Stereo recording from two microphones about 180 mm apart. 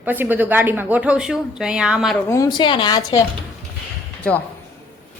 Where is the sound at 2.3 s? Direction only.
20° left (ahead or behind).